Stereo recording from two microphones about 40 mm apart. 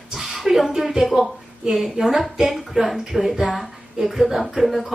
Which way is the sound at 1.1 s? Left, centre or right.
Centre.